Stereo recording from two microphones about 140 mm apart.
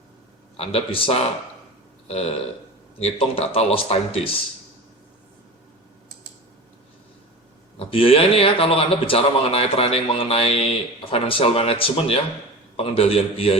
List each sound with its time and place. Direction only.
0.5 s a man's voice: 45° left (ahead or behind)
7.8 s a man's voice: 40° left (ahead or behind)